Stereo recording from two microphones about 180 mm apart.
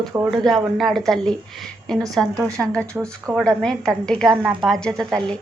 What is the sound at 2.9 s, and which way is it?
Speech, 15° right (ahead or behind).